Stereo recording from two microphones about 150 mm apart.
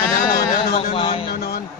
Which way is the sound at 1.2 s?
90° left.